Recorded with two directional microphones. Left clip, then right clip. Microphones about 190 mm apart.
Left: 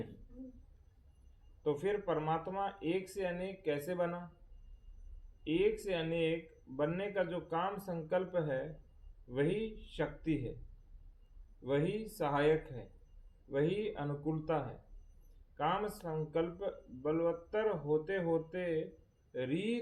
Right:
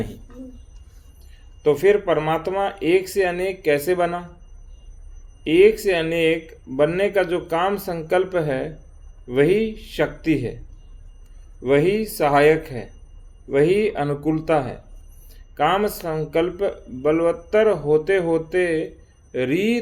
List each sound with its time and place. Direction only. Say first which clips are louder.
1.6 s speech: right 18 dB; 55° right (ahead or behind)
5.4 s speech: right 18 dB; 55° right (ahead or behind)
11.6 s speech: right 17 dB; 55° right (ahead or behind)